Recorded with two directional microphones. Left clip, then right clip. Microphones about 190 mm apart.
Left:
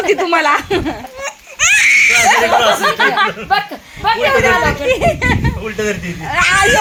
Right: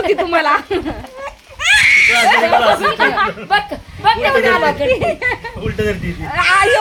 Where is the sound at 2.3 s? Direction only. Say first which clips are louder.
Even; 20° left (ahead or behind).